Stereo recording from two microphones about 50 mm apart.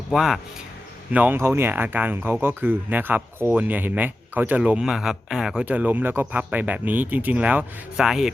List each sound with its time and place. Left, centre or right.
0.1 s speech: centre
1.1 s speech: right
1.4 s speech: right
1.7 s speech: right
4.6 s speech: centre
5.6 s speech: right
7.9 s speech: centre